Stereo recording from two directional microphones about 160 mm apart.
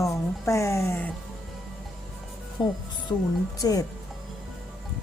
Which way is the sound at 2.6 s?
25° left (ahead or behind).